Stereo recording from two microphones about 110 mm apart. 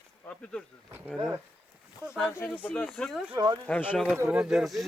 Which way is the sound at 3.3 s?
40° right (ahead or behind).